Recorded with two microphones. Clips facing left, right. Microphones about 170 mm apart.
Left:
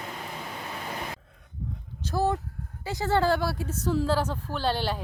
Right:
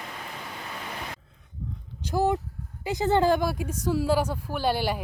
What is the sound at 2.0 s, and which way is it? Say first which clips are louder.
A woman's voice: right 2 dB; 15° right (ahead or behind).